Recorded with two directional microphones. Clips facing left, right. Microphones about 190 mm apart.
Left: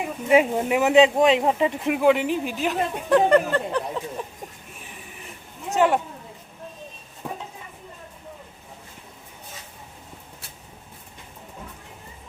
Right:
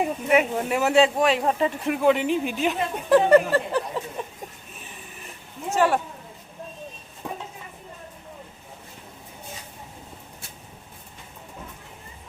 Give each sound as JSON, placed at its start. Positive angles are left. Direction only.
{"t": 0.3, "sound": "speech", "side_deg": 20}
{"t": 5.7, "sound": "speech", "side_deg": 20}